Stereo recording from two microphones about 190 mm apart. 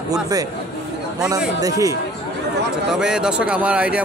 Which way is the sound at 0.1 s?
20° right (ahead or behind).